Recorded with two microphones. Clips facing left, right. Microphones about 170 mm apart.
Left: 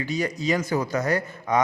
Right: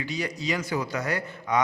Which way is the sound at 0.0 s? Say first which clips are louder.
Left 4 dB; 45° left (ahead or behind).